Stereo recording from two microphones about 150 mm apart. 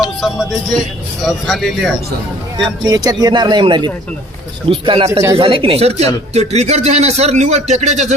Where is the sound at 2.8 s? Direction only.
25° right (ahead or behind).